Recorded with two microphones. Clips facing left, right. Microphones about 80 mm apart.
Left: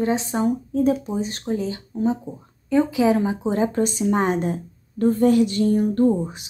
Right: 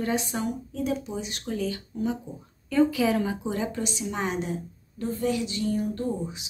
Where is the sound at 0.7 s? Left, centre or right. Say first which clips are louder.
Left 9 dB; left.